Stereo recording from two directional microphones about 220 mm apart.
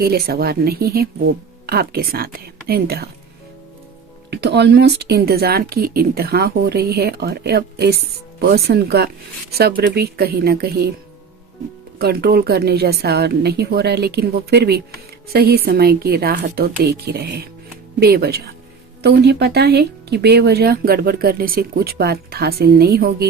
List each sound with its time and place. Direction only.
0.0 s speech: 45° right (ahead or behind)
4.3 s speech: 50° right (ahead or behind)
11.9 s speech: 45° right (ahead or behind)